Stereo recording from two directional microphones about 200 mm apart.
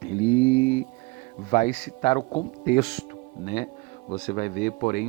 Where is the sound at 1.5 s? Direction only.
35° left (ahead or behind).